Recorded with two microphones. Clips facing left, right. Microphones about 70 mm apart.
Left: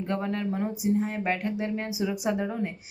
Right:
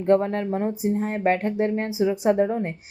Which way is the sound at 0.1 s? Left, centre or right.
Right.